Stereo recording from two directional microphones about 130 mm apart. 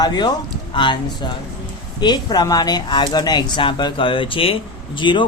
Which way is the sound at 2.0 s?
35° left (ahead or behind).